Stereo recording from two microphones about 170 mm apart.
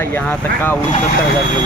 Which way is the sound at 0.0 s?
10° left (ahead or behind).